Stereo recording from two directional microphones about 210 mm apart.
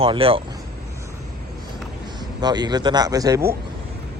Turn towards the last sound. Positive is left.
turn(degrees=-15)  # may be behind; listen again after turning